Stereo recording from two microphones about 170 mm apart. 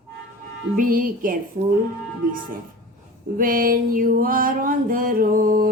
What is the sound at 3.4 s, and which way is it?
Music, 55° right (ahead or behind).